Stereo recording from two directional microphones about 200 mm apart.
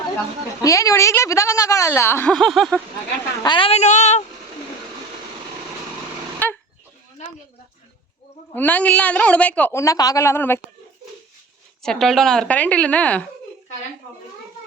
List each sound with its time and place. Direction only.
0.6 s speech: 15° left (ahead or behind)
3.4 s speech: 25° left (ahead or behind)
6.4 s goat: 10° left (ahead or behind)
8.5 s speech: 10° left (ahead or behind)
11.8 s a woman's voice: centre (ahead or behind)